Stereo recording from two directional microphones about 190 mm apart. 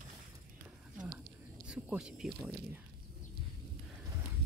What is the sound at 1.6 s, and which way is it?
Speech, 5° right (ahead or behind).